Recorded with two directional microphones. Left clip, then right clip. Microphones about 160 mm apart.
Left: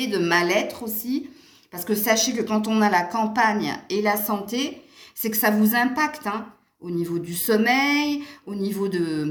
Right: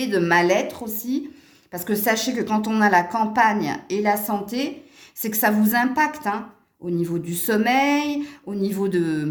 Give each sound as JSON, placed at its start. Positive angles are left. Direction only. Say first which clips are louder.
{"t": 0.0, "sound": "a woman's voice", "louder": "right 2 dB", "side_deg": -45}
{"t": 5.2, "sound": "speech", "louder": "right 1 dB", "side_deg": -45}